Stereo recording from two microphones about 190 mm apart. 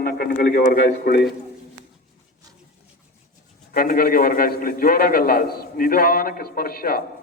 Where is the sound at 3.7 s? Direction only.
50° left (ahead or behind).